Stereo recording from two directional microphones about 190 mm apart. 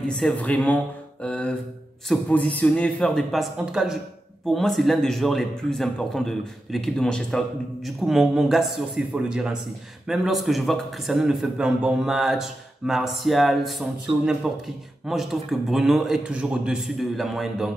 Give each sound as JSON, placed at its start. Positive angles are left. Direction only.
{"t": 0.0, "sound": "a man's voice", "side_deg": 5}
{"t": 14.1, "sound": "a man's voice", "side_deg": -30}
{"t": 14.5, "sound": "a man's voice", "side_deg": -5}